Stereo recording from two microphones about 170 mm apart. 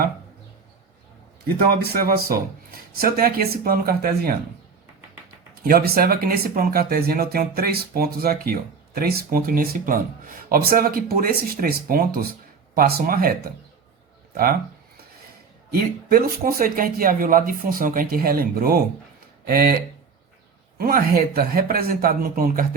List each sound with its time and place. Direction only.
1.7 s speech: 65° right (ahead or behind)
5.6 s speech: 60° right (ahead or behind)
15.7 s speech: 60° right (ahead or behind)
20.7 s speech: 60° right (ahead or behind)